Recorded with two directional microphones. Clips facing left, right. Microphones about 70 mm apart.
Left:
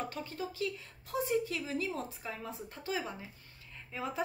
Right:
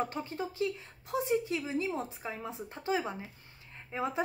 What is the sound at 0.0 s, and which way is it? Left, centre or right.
Speech, right.